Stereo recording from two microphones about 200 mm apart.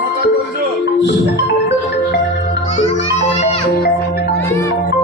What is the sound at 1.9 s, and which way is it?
Marimba, 55° left (ahead or behind).